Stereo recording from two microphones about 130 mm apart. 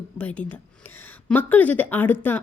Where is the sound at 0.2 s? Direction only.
10° left (ahead or behind).